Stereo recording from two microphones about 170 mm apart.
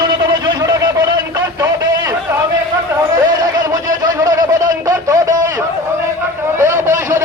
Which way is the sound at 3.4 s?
20° right (ahead or behind).